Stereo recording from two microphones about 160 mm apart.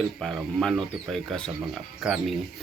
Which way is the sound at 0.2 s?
Centre (ahead or behind).